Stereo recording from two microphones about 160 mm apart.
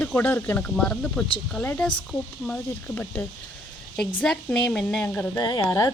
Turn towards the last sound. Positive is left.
turn(degrees=20)  # may be behind; listen again after turning